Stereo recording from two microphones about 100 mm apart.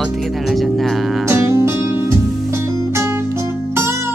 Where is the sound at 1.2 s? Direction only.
30° right (ahead or behind).